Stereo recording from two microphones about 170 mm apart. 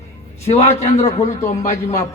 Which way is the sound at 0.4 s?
40° left (ahead or behind).